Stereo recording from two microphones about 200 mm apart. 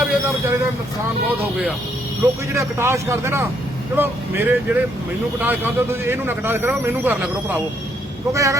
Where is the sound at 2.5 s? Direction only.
15° right (ahead or behind).